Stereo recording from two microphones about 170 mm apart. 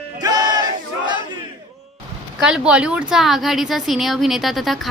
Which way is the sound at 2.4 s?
5° right (ahead or behind).